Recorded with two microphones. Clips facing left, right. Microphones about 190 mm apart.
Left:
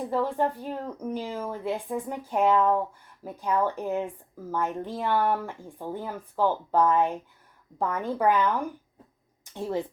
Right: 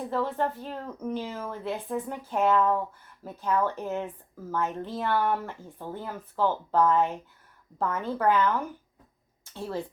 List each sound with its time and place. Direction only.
0.1 s a woman's voice: 10° left (ahead or behind)